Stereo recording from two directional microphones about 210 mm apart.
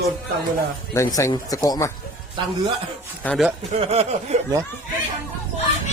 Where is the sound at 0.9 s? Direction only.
15° left (ahead or behind).